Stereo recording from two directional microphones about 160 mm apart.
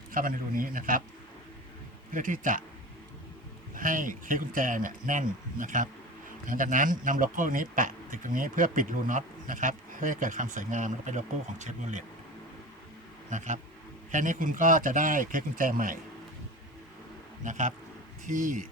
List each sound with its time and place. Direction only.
0.1 s speech: 60° right (ahead or behind)
2.1 s speech: 55° right (ahead or behind)
3.8 s speech: 60° right (ahead or behind)
13.3 s speech: 50° right (ahead or behind)
17.4 s speech: 50° right (ahead or behind)